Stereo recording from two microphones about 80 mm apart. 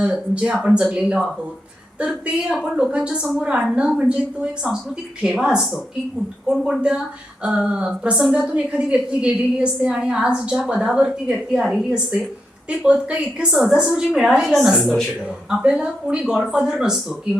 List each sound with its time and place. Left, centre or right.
0.0 s a woman's voice: centre